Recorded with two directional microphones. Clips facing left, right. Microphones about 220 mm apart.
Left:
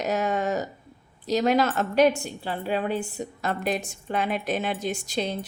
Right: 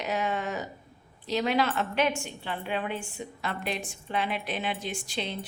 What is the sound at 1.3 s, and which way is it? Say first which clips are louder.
A woman's voice: left 5 dB; 40° left (ahead or behind).